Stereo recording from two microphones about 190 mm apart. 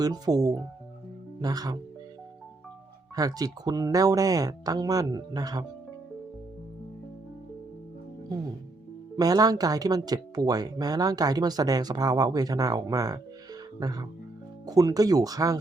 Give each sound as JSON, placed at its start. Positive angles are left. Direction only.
{"t": 0.0, "sound": "speech", "side_deg": -20}
{"t": 3.2, "sound": "speech", "side_deg": -20}
{"t": 9.1, "sound": "speech", "side_deg": -20}